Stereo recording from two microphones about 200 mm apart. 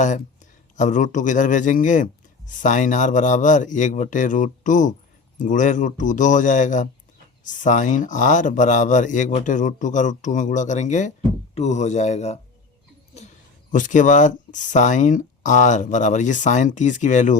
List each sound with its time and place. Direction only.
0.8 s speech: 40° left (ahead or behind)
13.7 s speech: 40° left (ahead or behind)